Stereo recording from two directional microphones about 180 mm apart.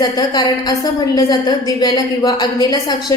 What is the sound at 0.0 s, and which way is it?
A woman's voice, 20° left (ahead or behind).